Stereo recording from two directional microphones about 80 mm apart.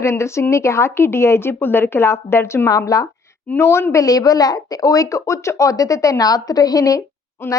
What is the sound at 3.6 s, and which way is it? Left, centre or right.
Speech, left.